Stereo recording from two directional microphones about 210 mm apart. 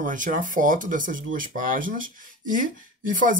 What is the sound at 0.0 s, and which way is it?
Speech, 40° right (ahead or behind).